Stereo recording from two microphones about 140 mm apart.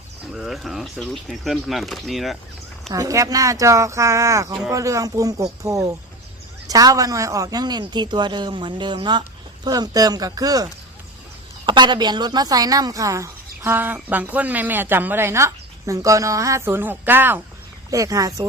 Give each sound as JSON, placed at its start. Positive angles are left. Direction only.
{"t": 0.3, "sound": "speech", "side_deg": 0}
{"t": 2.9, "sound": "speech", "side_deg": -25}